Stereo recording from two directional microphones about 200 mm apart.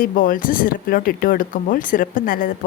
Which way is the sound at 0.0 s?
45° left (ahead or behind).